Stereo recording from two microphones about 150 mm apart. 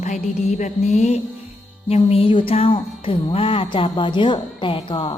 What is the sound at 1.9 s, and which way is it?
Music, 45° left (ahead or behind).